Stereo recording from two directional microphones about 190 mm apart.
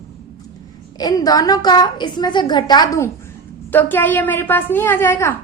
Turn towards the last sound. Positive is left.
turn(degrees=10)  # may be behind; listen again after turning